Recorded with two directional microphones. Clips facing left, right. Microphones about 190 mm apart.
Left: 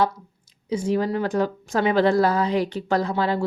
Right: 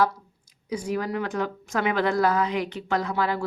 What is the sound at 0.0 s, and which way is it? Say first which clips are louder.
A woman's voice: left 1 dB; 25° left (ahead or behind).